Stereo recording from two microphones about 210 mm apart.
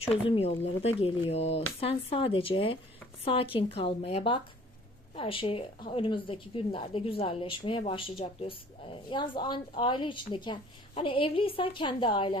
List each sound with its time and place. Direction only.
0.0 s a woman's voice: 25° left (ahead or behind)